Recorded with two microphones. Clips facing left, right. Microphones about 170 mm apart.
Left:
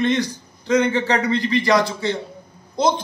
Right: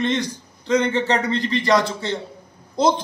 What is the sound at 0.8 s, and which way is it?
Speech, 25° right (ahead or behind).